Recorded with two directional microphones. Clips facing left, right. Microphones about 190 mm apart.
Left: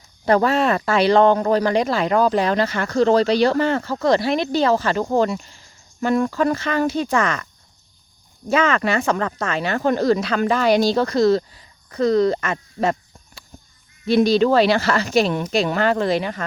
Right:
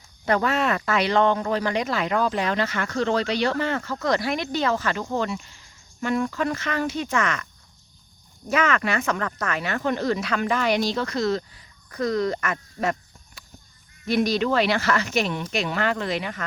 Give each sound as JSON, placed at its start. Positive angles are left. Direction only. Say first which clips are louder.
{"t": 0.3, "sound": "speech", "louder": "left 5 dB", "side_deg": 35}
{"t": 8.4, "sound": "speech", "louder": "left 4 dB", "side_deg": 30}